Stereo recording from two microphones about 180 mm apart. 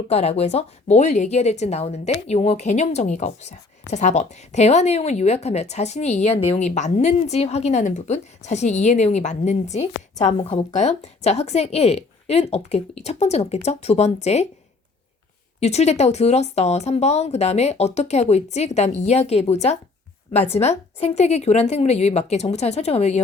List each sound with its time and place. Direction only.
0.1 s a woman's voice: 35° left (ahead or behind)
15.6 s a woman's voice: 35° left (ahead or behind)